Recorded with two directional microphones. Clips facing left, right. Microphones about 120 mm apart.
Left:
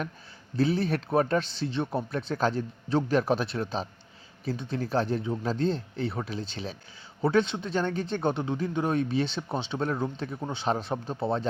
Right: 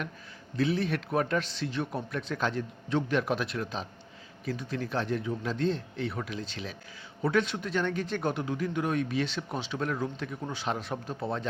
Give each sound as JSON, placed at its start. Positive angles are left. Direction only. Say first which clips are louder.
{"t": 0.5, "sound": "a man's voice", "louder": "left 2 dB", "side_deg": 35}